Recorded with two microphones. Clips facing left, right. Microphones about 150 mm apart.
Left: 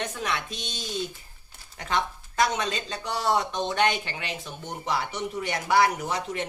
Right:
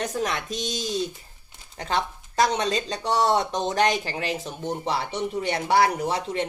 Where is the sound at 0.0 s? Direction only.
40° right (ahead or behind).